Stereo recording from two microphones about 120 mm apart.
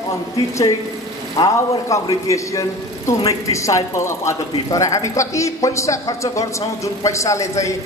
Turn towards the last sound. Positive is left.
turn(degrees=25)  # may be behind; listen again after turning